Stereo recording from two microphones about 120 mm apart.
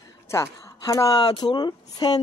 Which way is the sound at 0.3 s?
25° left (ahead or behind).